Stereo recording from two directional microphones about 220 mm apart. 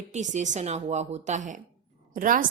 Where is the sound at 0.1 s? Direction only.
30° right (ahead or behind).